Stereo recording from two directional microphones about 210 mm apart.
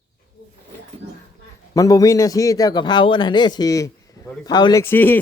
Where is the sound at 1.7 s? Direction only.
15° left (ahead or behind).